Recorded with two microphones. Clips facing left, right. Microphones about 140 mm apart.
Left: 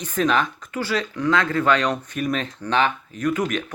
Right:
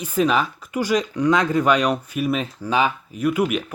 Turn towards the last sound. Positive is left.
turn(degrees=-10)  # may be behind; listen again after turning